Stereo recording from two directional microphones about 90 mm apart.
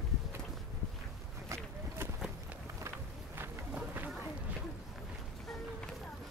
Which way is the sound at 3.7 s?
20° right (ahead or behind).